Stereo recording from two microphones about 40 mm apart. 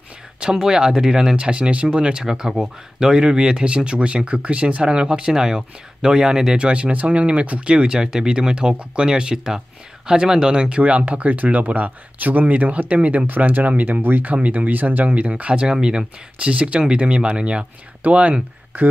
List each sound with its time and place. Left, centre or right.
0.4 s speech: centre
1.3 s speech: right
10.8 s speech: right
15.0 s speech: right
15.7 s speech: centre
16.4 s speech: right